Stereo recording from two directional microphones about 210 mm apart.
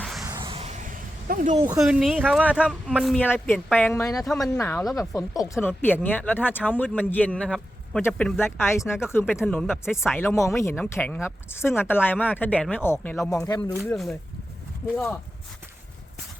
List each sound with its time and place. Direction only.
0.0 s a sound: centre (ahead or behind)
0.4 s a sound: 30° right (ahead or behind)
1.8 s speech: centre (ahead or behind)
9.5 s speech: centre (ahead or behind)
10.2 s speech: 10° left (ahead or behind)
13.4 s speech: 20° left (ahead or behind)
13.8 s speech: centre (ahead or behind)